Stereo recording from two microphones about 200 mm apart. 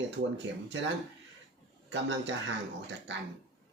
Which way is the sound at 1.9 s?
60° right (ahead or behind).